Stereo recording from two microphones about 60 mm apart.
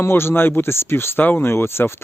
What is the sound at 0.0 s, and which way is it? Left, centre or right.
Speech, left.